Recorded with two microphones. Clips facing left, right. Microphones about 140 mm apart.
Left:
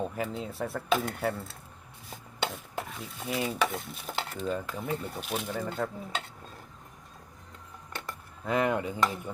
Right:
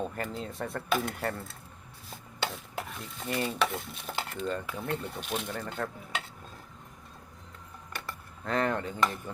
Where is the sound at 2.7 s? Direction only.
Centre (ahead or behind).